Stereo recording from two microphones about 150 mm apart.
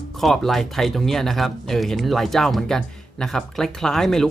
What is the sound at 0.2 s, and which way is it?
Speech, centre (ahead or behind).